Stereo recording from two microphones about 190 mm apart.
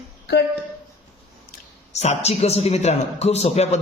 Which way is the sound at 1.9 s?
35° left (ahead or behind).